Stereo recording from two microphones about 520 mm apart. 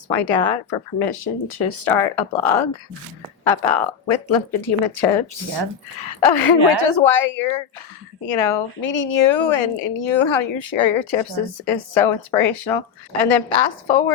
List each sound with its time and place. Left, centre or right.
0.1 s speech: left
3.7 s a woman's voice: left